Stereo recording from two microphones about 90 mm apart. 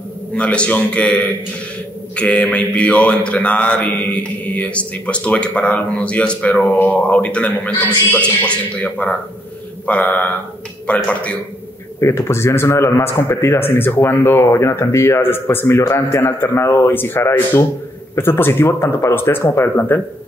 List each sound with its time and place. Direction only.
0.3 s speech: 15° left (ahead or behind)
12.0 s a man's voice: 30° left (ahead or behind)